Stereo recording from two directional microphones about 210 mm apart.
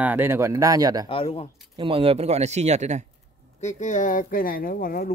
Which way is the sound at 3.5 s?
35° left (ahead or behind).